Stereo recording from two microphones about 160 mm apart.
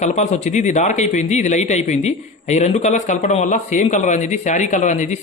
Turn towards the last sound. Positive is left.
turn(degrees=50)  # may be behind; listen again after turning